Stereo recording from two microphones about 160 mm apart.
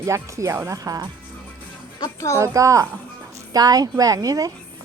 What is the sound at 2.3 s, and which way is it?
A woman's voice, 20° right (ahead or behind).